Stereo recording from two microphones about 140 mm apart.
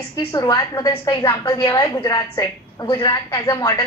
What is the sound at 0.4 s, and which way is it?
A woman's voice, 25° left (ahead or behind).